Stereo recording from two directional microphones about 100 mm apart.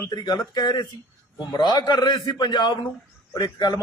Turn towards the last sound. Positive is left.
turn(degrees=45)  # may be behind; listen again after turning